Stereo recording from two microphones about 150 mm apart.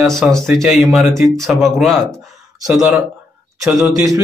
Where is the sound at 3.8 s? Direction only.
20° right (ahead or behind).